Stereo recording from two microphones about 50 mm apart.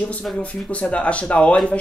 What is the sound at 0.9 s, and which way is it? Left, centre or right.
Speech, left.